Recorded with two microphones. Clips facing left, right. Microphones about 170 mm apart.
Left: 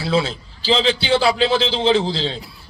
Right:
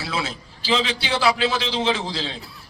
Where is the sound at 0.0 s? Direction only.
30° left (ahead or behind).